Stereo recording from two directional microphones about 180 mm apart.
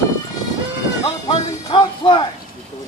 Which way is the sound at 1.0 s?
25° left (ahead or behind).